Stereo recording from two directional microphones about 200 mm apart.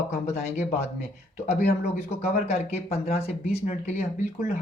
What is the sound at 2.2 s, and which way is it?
Speech, 35° left (ahead or behind).